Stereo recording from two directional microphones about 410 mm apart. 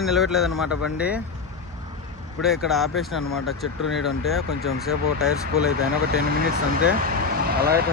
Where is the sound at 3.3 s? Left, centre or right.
Left.